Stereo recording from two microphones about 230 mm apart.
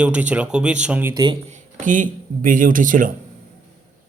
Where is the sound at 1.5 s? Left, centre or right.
Right.